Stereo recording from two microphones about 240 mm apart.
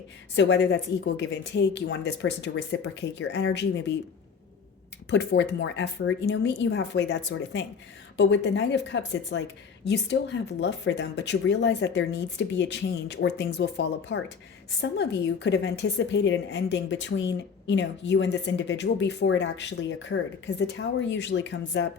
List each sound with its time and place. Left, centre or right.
0.3 s a woman's voice: left
5.1 s a woman's voice: left